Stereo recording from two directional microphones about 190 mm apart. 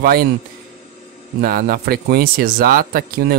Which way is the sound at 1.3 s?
50° right (ahead or behind).